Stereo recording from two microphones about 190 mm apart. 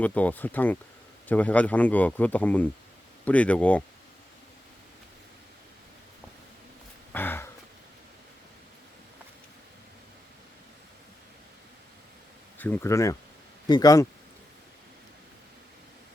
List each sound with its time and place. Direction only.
0.0 s speech: 10° left (ahead or behind)
7.1 s a sound: 10° left (ahead or behind)
12.5 s speech: 10° left (ahead or behind)